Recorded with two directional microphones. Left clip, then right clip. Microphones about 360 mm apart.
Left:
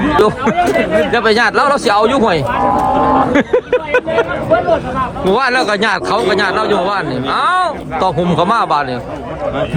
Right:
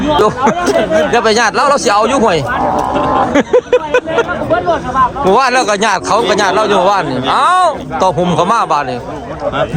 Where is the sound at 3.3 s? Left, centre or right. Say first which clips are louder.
Right 3 dB; centre.